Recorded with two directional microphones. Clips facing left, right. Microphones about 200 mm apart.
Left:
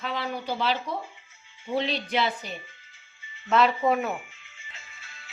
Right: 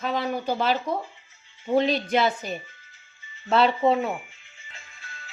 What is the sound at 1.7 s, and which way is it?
Speech, 45° right (ahead or behind).